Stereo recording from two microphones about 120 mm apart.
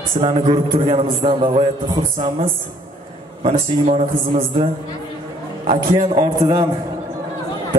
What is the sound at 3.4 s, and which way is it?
Speech, 65° right (ahead or behind).